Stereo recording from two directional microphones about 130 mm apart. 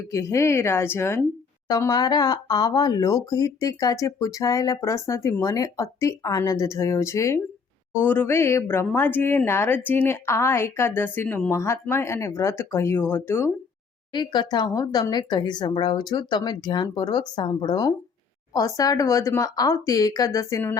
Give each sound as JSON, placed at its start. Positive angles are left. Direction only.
{"t": 0.0, "sound": "speech", "side_deg": 25}
{"t": 1.6, "sound": "speech", "side_deg": 30}
{"t": 14.1, "sound": "speech", "side_deg": 35}